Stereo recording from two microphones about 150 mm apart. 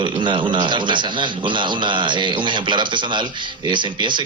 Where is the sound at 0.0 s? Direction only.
35° right (ahead or behind).